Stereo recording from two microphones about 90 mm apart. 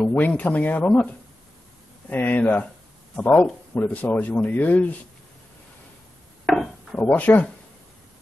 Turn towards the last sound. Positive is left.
turn(degrees=20)  # may be behind; listen again after turning